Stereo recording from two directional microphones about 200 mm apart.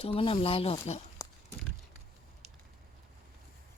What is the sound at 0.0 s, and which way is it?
Speech, 25° left (ahead or behind).